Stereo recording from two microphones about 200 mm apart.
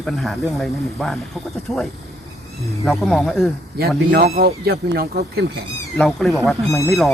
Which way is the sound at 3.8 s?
50° right (ahead or behind).